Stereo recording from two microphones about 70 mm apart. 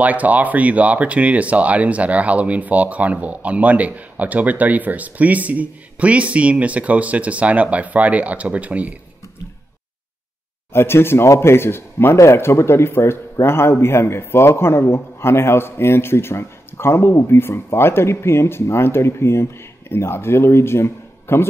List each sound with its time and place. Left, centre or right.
0.0 s speech: right
10.7 s speech: left